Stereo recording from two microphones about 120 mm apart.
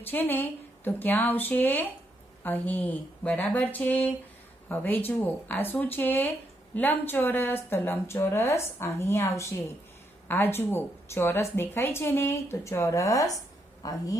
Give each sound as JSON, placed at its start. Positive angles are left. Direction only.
{"t": 0.0, "sound": "a woman's voice", "side_deg": 15}